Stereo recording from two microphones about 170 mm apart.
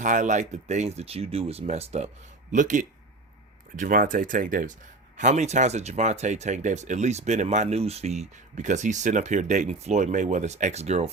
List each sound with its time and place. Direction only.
0.0 s speech: 45° right (ahead or behind)